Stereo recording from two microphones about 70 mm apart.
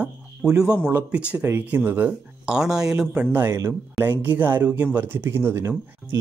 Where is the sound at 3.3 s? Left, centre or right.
Right.